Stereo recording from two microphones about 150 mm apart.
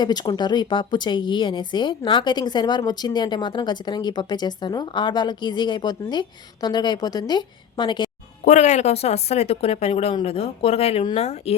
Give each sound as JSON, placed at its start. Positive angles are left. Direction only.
{"t": 0.0, "sound": "speech", "side_deg": 30}
{"t": 8.4, "sound": "speech", "side_deg": 50}